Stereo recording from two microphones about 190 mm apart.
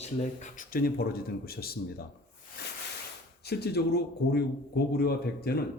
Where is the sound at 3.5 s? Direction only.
60° left (ahead or behind).